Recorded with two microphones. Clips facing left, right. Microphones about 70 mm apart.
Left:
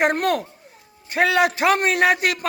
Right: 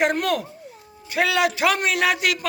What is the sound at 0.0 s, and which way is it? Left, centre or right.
A man's voice, left.